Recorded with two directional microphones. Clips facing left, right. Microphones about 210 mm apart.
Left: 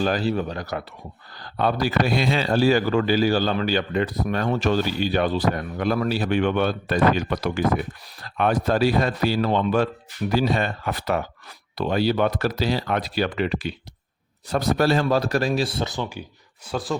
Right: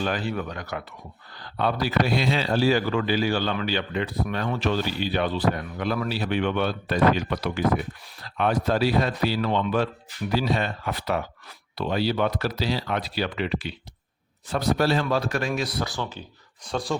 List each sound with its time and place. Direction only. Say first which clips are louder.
0.0 s a man's voice: left 5 dB; 35° left (ahead or behind); by 16.2 s 15° left (ahead or behind)
16.6 s speech: left 1 dB; 5° left (ahead or behind)